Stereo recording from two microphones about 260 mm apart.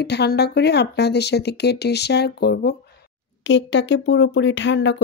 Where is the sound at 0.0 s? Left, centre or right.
Left.